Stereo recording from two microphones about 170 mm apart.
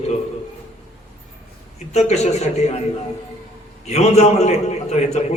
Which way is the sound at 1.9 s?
40° left (ahead or behind).